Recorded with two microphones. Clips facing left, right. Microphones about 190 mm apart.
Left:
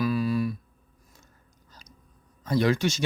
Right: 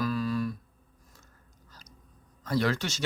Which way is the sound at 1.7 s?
20° left (ahead or behind).